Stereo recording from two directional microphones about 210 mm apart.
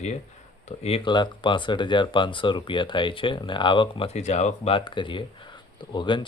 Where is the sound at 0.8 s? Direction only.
30° left (ahead or behind).